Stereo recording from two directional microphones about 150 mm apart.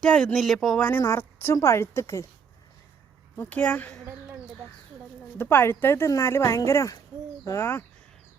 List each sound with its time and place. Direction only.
0.0 s speech: 5° left (ahead or behind)
3.3 s speech: 10° left (ahead or behind)
5.4 s speech: 15° left (ahead or behind)